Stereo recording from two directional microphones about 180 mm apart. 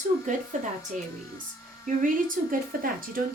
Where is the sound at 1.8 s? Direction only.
50° right (ahead or behind).